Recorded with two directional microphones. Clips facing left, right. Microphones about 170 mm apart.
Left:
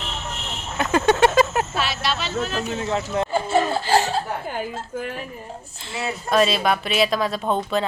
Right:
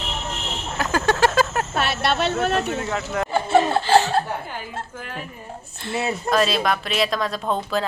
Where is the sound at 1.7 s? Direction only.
60° right (ahead or behind).